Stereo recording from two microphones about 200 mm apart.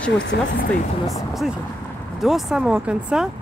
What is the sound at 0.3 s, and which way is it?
Speech, 55° left (ahead or behind).